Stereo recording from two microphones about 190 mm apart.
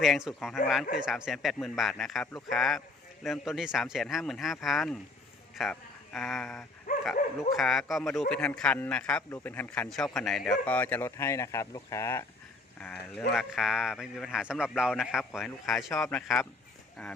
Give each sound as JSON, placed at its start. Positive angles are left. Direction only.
{"t": 0.0, "sound": "a man's voice", "side_deg": 0}
{"t": 6.9, "sound": "dog", "side_deg": 40}
{"t": 7.5, "sound": "a man's voice", "side_deg": 0}